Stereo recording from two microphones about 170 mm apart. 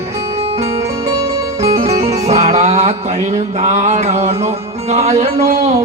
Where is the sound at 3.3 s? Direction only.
40° right (ahead or behind).